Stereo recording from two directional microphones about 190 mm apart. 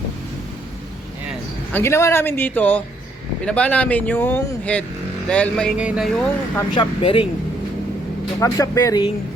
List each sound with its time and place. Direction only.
1.7 s speech: 15° left (ahead or behind); by 6.2 s 5° right (ahead or behind)
6.7 s speech: 30° left (ahead or behind)
8.4 s speech: 15° left (ahead or behind)